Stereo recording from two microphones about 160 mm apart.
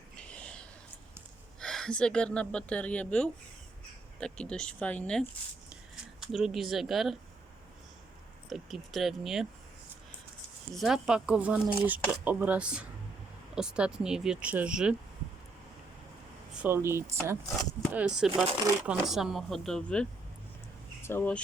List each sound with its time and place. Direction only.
0.2 s a sound: 10° left (ahead or behind)
1.5 s speech: 5° left (ahead or behind)
8.4 s speech: centre (ahead or behind)
10.8 s speech: 5° right (ahead or behind)
16.6 s speech: 15° right (ahead or behind); by 21.4 s 10° left (ahead or behind)